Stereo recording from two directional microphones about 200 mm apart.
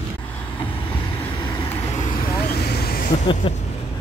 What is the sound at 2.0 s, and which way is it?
Vehicle, 40° left (ahead or behind).